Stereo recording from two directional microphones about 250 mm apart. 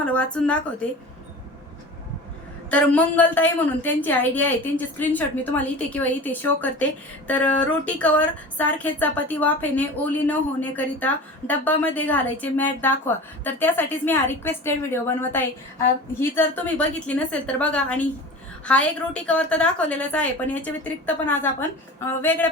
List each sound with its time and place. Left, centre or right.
0.0 s a woman's voice: centre
2.6 s a woman's voice: centre